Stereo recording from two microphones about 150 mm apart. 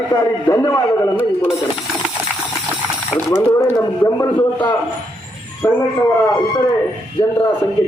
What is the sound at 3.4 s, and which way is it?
Speech, 15° left (ahead or behind).